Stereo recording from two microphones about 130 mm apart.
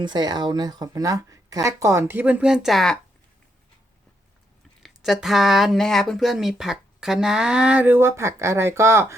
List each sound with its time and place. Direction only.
0.0 s speech: 35° right (ahead or behind); by 3.0 s 5° left (ahead or behind)
4.8 s speech: centre (ahead or behind); by 9.1 s 20° right (ahead or behind)